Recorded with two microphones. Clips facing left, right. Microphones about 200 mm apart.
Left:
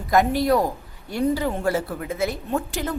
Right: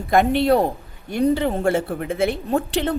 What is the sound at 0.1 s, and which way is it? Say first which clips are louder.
A woman's voice: right 2 dB; 25° right (ahead or behind).